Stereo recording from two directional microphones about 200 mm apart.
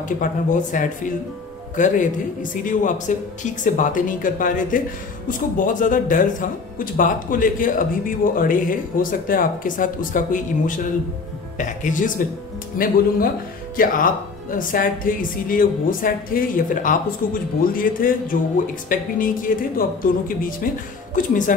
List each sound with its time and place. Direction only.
0.2 s a woman's voice: 40° left (ahead or behind)